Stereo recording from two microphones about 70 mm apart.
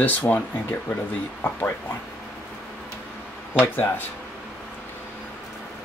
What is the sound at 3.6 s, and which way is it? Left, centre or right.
Speech, left.